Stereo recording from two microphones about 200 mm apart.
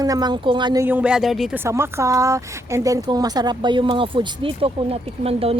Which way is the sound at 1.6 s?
15° right (ahead or behind).